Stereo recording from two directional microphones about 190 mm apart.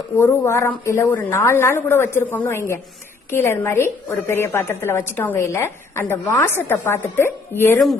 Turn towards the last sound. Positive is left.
turn(degrees=10)  # may be behind; listen again after turning